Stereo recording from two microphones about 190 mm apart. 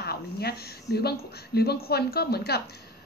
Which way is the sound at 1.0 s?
55° left (ahead or behind).